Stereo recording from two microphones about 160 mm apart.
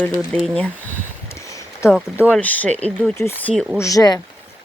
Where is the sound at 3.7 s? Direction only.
20° left (ahead or behind).